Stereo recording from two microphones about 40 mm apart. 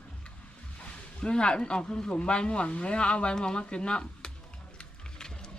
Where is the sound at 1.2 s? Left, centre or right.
Left.